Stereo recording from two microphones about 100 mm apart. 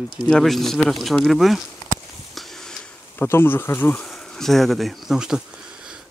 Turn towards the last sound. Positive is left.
turn(degrees=-5)  # may be behind; listen again after turning